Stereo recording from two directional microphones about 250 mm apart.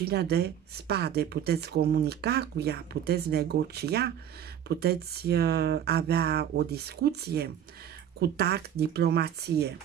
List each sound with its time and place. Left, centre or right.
0.0 s speech: right